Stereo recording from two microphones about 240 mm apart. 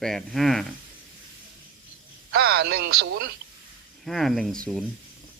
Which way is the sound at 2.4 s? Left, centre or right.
Right.